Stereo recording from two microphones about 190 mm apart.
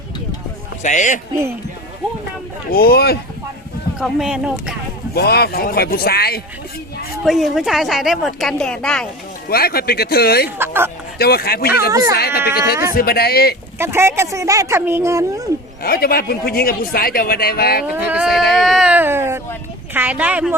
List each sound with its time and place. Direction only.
0.8 s a man's voice: 40° left (ahead or behind)
2.6 s speech: 55° left (ahead or behind)
4.0 s speech: 5° right (ahead or behind)
5.1 s speech: 55° left (ahead or behind)
7.3 s speech: centre (ahead or behind)
9.5 s speech: 55° left (ahead or behind)
10.6 s speech: 10° right (ahead or behind)
11.2 s speech: 55° left (ahead or behind)
13.7 s speech: 15° right (ahead or behind)
15.8 s speech: 55° left (ahead or behind)
17.9 s speech: 5° right (ahead or behind)